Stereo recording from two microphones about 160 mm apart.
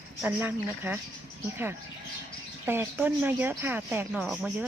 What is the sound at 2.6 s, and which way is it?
Speech, 15° right (ahead or behind).